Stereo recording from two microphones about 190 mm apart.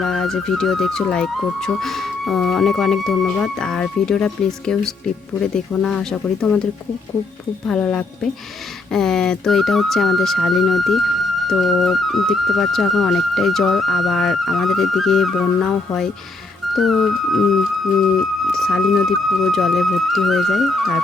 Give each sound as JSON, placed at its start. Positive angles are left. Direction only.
{"t": 0.0, "sound": "speech", "side_deg": 0}
{"t": 7.7, "sound": "speech", "side_deg": 5}